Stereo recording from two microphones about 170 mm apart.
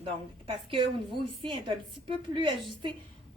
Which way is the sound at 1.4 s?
30° right (ahead or behind).